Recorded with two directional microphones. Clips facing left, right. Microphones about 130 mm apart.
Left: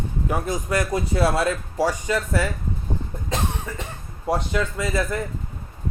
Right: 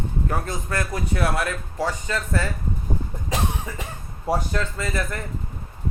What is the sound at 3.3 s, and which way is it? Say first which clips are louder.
Cough: even; 10° right (ahead or behind).